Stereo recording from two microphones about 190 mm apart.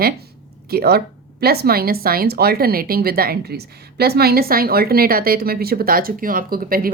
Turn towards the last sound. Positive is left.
turn(degrees=-50)  # may be behind; listen again after turning